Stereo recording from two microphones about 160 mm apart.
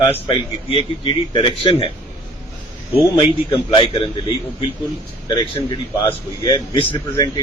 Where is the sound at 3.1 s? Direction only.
35° left (ahead or behind).